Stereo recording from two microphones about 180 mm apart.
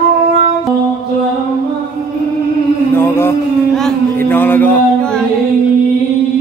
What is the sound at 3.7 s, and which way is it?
Music, 5° left (ahead or behind).